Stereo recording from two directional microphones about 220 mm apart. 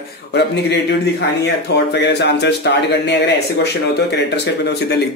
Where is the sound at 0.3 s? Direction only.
50° left (ahead or behind).